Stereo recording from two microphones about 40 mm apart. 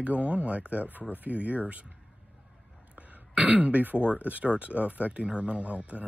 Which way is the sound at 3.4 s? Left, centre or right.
Right.